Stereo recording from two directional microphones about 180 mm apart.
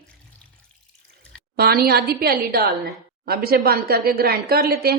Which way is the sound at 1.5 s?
60° right (ahead or behind).